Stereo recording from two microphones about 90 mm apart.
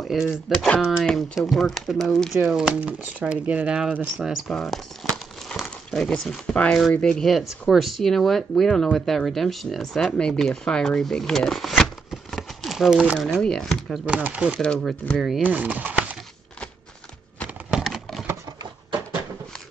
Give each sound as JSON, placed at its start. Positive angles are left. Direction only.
{"t": 0.0, "sound": "speech", "side_deg": -5}
{"t": 13.3, "sound": "speech", "side_deg": 5}
{"t": 14.0, "sound": "speech", "side_deg": -15}
{"t": 14.6, "sound": "speech", "side_deg": 5}
{"t": 15.4, "sound": "speech", "side_deg": -15}
{"t": 17.8, "sound": "a sound", "side_deg": 0}